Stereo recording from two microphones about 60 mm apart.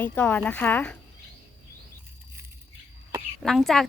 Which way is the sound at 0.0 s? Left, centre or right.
Left.